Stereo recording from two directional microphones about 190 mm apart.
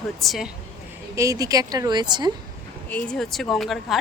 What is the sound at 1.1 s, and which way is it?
A woman's voice, 15° right (ahead or behind).